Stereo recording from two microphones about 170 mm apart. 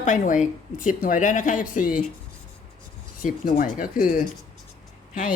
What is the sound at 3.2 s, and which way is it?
Speech, 55° left (ahead or behind).